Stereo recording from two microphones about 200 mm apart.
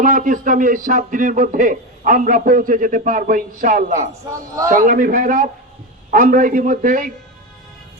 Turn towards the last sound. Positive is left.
turn(degrees=-40)  # may be behind; listen again after turning